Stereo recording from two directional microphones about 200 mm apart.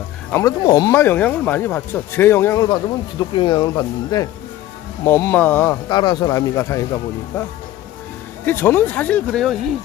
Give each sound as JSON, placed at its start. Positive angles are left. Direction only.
{"t": 0.3, "sound": "speech", "side_deg": 10}
{"t": 5.9, "sound": "speech", "side_deg": 20}
{"t": 8.4, "sound": "speech", "side_deg": 10}